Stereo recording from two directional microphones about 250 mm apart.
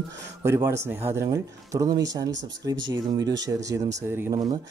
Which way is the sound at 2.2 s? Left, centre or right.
Right.